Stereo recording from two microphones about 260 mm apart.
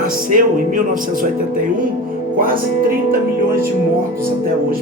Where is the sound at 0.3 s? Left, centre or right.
Right.